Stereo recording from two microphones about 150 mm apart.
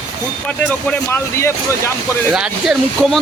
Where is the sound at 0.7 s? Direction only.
10° left (ahead or behind).